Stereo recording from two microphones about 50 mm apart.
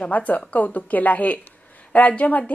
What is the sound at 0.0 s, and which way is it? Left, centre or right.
A woman's voice, left.